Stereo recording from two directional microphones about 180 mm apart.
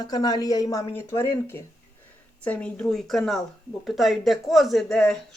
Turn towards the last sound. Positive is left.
turn(degrees=5)  # may be behind; listen again after turning